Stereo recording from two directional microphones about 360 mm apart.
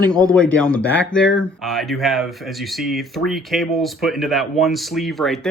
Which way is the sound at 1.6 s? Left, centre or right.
Centre.